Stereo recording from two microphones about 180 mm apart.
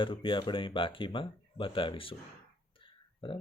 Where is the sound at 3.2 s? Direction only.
30° left (ahead or behind).